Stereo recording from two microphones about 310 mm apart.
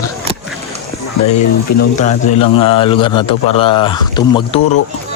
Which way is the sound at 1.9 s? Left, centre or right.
Left.